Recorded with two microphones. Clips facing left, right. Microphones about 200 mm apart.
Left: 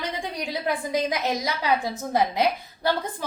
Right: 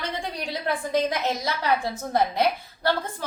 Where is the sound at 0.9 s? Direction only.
15° left (ahead or behind).